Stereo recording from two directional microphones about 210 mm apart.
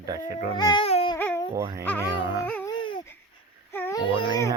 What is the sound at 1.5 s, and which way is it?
Speech, 15° right (ahead or behind).